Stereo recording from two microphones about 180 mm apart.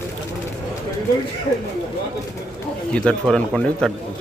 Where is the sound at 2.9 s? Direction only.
5° left (ahead or behind).